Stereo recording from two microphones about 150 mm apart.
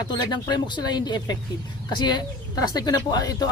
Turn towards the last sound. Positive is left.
turn(degrees=25)  # may be behind; listen again after turning